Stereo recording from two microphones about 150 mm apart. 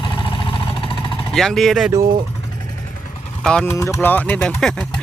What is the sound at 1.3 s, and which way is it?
Speech, centre (ahead or behind).